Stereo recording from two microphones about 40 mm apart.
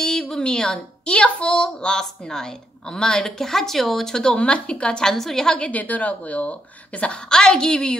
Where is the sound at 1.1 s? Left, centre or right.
Left; by 4.3 s centre.